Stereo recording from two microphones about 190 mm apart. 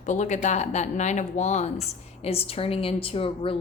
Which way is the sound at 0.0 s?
40° left (ahead or behind).